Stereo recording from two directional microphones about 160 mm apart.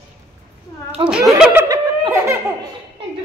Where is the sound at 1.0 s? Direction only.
30° right (ahead or behind).